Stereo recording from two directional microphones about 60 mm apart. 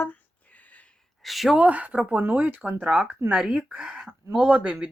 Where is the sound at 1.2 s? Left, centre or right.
Centre.